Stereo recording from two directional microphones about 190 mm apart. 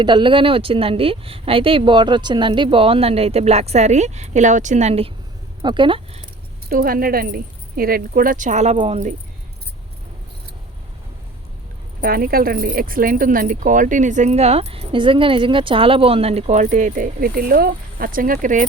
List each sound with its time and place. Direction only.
0.0 s speech: 25° right (ahead or behind)
6.7 s speech: 50° right (ahead or behind)
11.9 s speech: 50° right (ahead or behind)